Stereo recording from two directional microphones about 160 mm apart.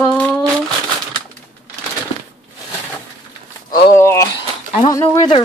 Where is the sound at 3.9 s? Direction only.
20° left (ahead or behind).